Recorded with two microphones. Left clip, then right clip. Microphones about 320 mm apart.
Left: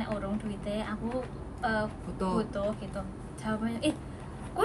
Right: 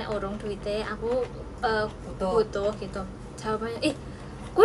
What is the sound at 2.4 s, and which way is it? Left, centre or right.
Speech, right.